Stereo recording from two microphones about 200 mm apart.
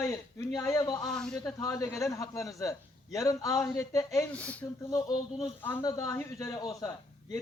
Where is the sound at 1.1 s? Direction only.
5° left (ahead or behind).